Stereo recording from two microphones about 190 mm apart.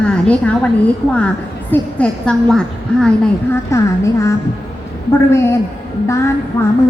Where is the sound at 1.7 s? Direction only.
5° left (ahead or behind).